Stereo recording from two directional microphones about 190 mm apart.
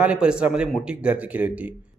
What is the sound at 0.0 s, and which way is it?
A man's voice, 5° right (ahead or behind).